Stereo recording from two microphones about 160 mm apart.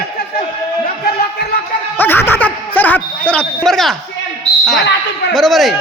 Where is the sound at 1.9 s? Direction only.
15° left (ahead or behind).